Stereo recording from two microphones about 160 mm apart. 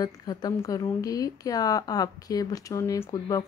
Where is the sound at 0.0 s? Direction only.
25° left (ahead or behind).